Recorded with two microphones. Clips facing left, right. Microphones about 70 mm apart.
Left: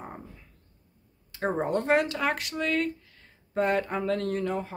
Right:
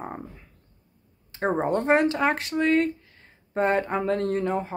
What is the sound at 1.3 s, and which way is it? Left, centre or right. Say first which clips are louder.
Speech: right 3 dB; right.